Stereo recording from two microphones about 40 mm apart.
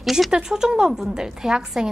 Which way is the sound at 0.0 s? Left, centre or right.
Centre.